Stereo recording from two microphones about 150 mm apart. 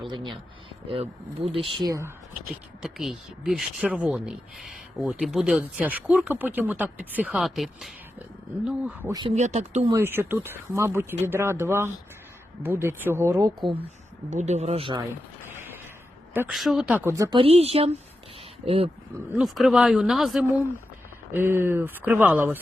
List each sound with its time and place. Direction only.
0.0 s speech: 30° right (ahead or behind)
2.8 s speech: centre (ahead or behind)
9.3 s speech: 50° right (ahead or behind)
9.9 s speech: 15° right (ahead or behind)
14.3 s speech: 50° right (ahead or behind)
16.5 s speech: centre (ahead or behind)
17.0 s speech: 20° right (ahead or behind)
17.3 s speech: 40° right (ahead or behind)
19.4 s speech: centre (ahead or behind)
21.3 s speech: 15° right (ahead or behind)